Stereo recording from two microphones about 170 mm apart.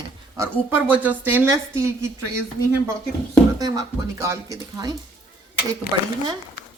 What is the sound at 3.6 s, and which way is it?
Speech, 20° right (ahead or behind).